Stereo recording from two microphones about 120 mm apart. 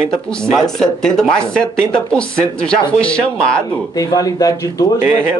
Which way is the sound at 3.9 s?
30° left (ahead or behind).